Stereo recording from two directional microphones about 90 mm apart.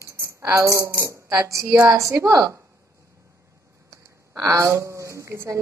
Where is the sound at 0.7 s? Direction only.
30° right (ahead or behind).